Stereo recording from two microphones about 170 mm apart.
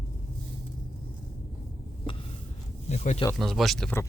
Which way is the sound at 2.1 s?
30° left (ahead or behind).